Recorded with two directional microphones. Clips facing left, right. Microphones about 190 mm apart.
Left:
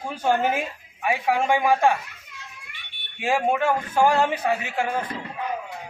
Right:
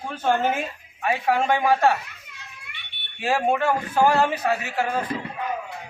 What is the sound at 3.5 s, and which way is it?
A woman's voice, 15° left (ahead or behind).